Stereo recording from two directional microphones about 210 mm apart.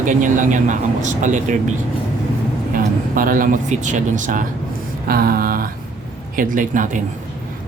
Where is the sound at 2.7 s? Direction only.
40° right (ahead or behind).